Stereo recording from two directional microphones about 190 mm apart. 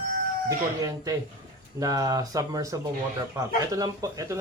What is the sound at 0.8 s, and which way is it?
Speech, 20° right (ahead or behind).